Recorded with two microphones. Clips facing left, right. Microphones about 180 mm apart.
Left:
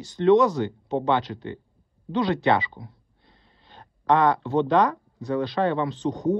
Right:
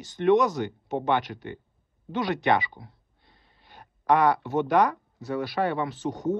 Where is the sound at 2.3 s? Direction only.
20° right (ahead or behind).